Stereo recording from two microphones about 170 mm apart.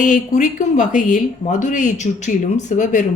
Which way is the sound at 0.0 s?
45° left (ahead or behind).